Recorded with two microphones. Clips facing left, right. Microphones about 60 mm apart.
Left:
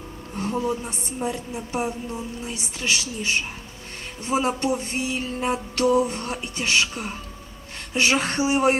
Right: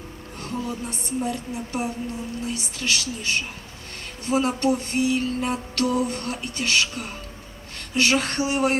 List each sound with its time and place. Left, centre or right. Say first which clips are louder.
0.3 s music: left 5 dB; left